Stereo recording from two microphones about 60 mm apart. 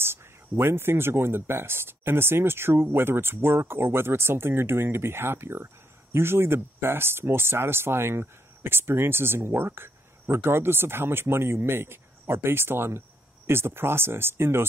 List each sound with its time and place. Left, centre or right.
0.0 s speech: right